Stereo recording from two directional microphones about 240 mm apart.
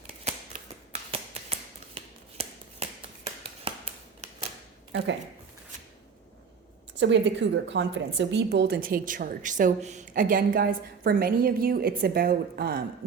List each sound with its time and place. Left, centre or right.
0.1 s a sound: right
1.1 s finger snapping: right
2.0 s scissors: right
7.0 s a woman's voice: right